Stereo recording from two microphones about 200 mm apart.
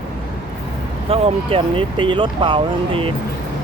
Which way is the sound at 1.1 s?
25° right (ahead or behind).